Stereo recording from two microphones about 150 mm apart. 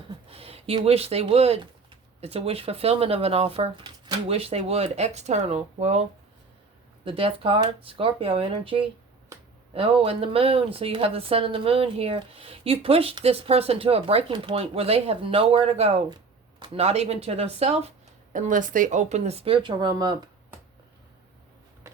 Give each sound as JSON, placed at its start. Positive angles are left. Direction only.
{"t": 0.3, "sound": "a sound", "side_deg": -40}
{"t": 0.9, "sound": "speech", "side_deg": -40}
{"t": 18.3, "sound": "speech", "side_deg": -60}